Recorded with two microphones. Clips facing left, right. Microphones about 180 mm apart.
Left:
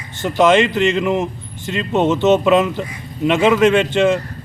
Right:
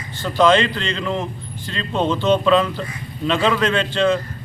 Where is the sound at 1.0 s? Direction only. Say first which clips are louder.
Left 6 dB; 10° left (ahead or behind).